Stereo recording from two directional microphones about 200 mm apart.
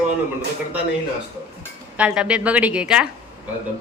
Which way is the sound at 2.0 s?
5° right (ahead or behind).